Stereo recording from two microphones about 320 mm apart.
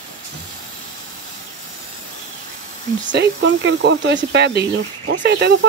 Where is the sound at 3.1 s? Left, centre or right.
Right.